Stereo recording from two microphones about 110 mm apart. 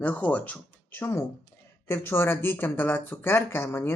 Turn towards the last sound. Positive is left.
turn(degrees=20)  # may be behind; listen again after turning